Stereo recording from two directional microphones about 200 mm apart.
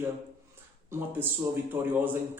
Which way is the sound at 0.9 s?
10° right (ahead or behind).